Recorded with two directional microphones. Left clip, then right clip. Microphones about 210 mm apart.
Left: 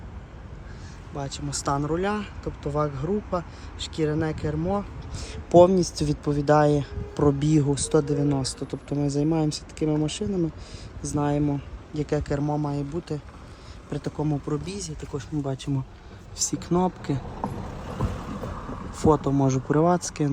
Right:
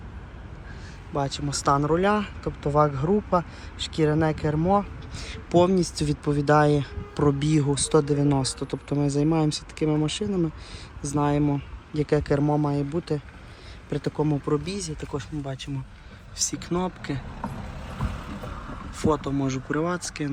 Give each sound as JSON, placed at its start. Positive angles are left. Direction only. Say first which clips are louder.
{"t": 1.1, "sound": "speech", "louder": "right 5 dB", "side_deg": 5}
{"t": 15.4, "sound": "speech", "louder": "left 4 dB", "side_deg": 25}
{"t": 18.9, "sound": "speech", "louder": "left 4 dB", "side_deg": 20}